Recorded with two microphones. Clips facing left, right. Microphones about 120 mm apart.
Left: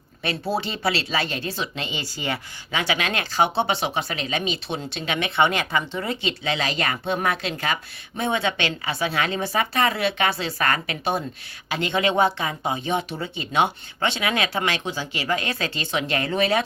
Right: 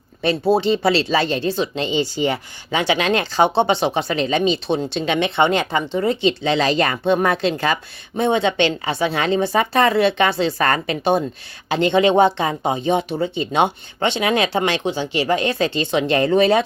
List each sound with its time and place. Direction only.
0.2 s speech: 25° right (ahead or behind)